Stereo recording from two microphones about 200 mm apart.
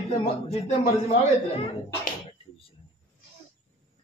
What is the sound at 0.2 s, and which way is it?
A woman's voice, 30° left (ahead or behind).